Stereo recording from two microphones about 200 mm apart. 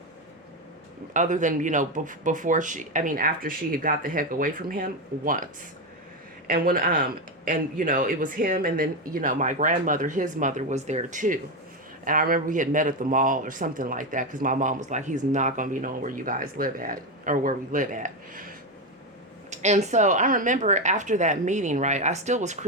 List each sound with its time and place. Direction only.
1.1 s speech: 40° right (ahead or behind)
6.5 s speech: 45° right (ahead or behind)